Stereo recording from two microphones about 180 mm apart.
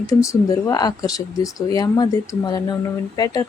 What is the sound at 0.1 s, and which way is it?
A woman's voice, 20° left (ahead or behind).